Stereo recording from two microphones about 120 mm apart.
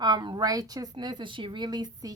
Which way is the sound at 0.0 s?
35° right (ahead or behind).